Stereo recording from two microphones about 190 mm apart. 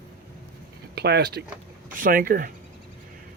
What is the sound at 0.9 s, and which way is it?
Speech, 60° right (ahead or behind).